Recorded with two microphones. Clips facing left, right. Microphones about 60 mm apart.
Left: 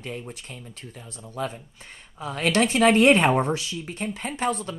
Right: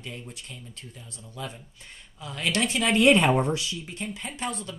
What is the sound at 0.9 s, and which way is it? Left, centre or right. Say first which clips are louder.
Speech: left 9 dB; left.